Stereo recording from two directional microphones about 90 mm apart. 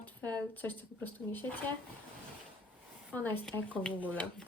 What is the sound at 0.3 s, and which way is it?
Speech, 20° left (ahead or behind).